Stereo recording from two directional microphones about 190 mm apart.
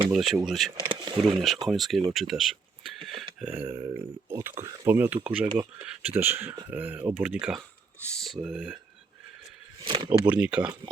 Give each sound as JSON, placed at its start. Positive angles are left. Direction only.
{"t": 0.1, "sound": "speech", "side_deg": 0}
{"t": 0.9, "sound": "a sound", "side_deg": -25}
{"t": 1.2, "sound": "speech", "side_deg": 0}
{"t": 3.2, "sound": "a sound", "side_deg": -5}
{"t": 4.3, "sound": "speech", "side_deg": -15}
{"t": 9.8, "sound": "speech", "side_deg": -25}
{"t": 10.1, "sound": "speech", "side_deg": -5}